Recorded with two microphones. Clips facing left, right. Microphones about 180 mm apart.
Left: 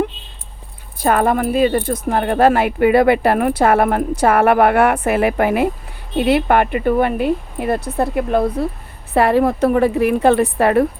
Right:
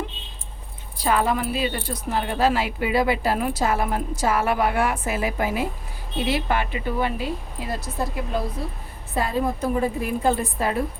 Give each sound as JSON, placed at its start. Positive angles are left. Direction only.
{"t": 0.9, "sound": "a woman's voice", "side_deg": 55}